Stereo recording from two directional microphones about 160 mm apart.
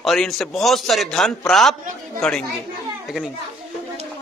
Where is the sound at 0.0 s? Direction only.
Centre (ahead or behind).